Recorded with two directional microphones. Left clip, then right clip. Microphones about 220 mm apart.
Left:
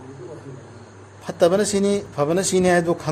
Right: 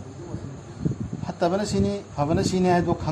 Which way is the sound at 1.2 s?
50° left (ahead or behind).